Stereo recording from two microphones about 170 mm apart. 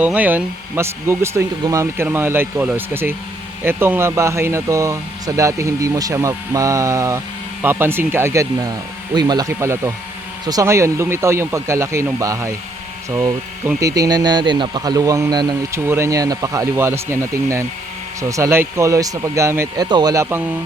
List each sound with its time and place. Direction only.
0.0 s speech: 10° right (ahead or behind)